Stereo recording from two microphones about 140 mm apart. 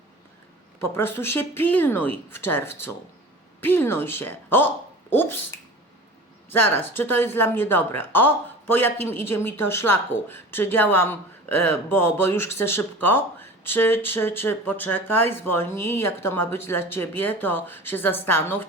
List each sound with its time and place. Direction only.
0.8 s a woman's voice: 15° left (ahead or behind)
6.7 s a woman's voice: 15° left (ahead or behind)